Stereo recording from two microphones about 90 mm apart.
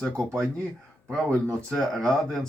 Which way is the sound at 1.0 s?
10° left (ahead or behind).